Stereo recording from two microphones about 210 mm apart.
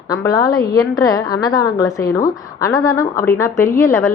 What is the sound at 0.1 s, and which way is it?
A woman's voice, 15° left (ahead or behind).